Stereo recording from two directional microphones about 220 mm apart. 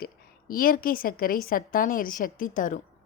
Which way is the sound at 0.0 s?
40° left (ahead or behind).